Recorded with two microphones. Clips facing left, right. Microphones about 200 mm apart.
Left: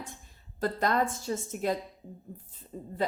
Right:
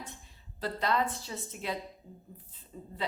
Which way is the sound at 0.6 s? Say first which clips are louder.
Left 3 dB; 45° left (ahead or behind).